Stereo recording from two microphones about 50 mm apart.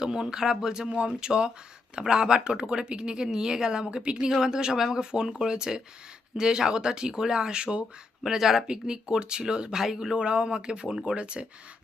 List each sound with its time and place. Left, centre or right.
0.0 s speech: centre
4.3 s speech: centre
8.2 s speech: centre